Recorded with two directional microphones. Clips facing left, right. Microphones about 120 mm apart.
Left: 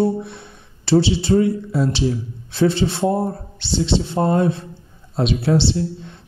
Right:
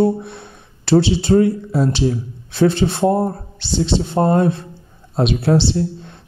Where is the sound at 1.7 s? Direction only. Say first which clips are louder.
Right 2 dB; 45° right (ahead or behind).